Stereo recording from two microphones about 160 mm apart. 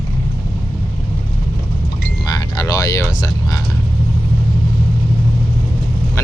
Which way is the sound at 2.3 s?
25° left (ahead or behind).